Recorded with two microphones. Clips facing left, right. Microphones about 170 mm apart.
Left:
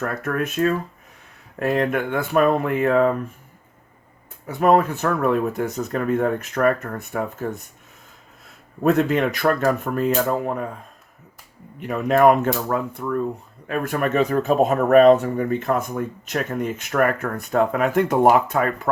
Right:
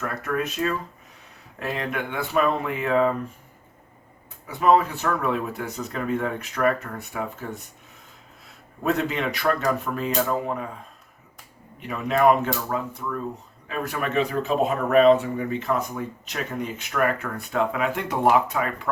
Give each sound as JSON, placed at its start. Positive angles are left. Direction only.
{"t": 0.0, "sound": "speech", "side_deg": 50}
{"t": 4.4, "sound": "speech", "side_deg": 50}
{"t": 8.8, "sound": "speech", "side_deg": 50}
{"t": 11.8, "sound": "speech", "side_deg": 50}